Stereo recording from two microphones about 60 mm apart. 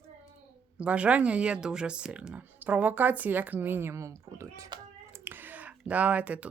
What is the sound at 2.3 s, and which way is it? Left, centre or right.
A woman's voice, right.